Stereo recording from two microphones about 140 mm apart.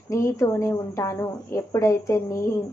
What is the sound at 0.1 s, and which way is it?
A woman's voice, 20° left (ahead or behind).